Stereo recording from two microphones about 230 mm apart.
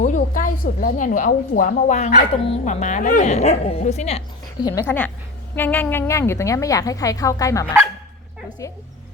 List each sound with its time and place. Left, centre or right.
0.0 s a woman's voice: left
4.6 s a woman's voice: centre